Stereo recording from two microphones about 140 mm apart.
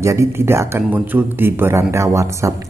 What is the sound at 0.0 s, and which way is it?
A man's voice, 20° right (ahead or behind).